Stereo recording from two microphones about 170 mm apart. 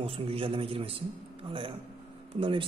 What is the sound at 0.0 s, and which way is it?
A man's voice, 35° right (ahead or behind).